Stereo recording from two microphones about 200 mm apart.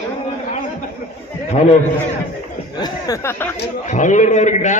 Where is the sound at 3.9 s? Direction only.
35° left (ahead or behind).